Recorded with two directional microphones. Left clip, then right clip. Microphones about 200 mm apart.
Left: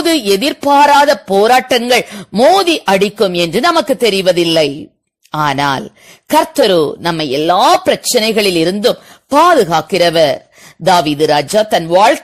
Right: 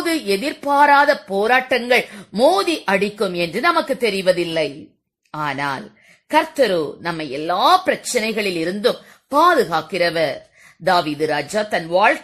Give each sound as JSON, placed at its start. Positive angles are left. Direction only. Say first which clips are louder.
{"t": 0.0, "sound": "speech", "louder": "left 8 dB", "side_deg": 35}